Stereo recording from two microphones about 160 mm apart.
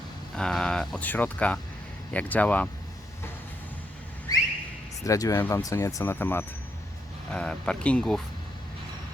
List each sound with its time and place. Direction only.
0.3 s speech: 5° left (ahead or behind)
5.0 s speech: 20° left (ahead or behind)